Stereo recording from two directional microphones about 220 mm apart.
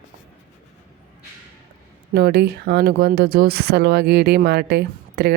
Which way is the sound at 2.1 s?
45° right (ahead or behind).